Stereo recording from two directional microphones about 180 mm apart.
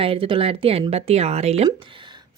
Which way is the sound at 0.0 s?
30° right (ahead or behind).